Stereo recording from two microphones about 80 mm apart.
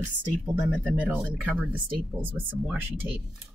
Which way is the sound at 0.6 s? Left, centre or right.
Centre.